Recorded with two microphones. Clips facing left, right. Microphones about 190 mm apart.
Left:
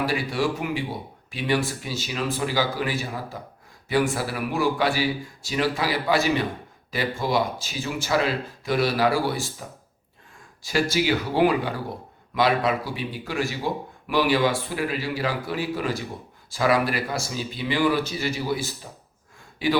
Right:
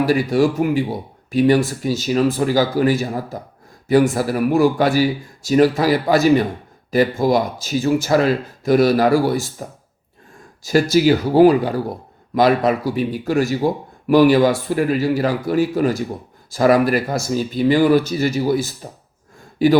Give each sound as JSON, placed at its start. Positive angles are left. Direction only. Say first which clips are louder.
{"t": 0.0, "sound": "speech", "louder": "right 9 dB", "side_deg": -45}